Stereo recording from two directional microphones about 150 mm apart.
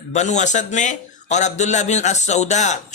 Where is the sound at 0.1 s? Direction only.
50° left (ahead or behind).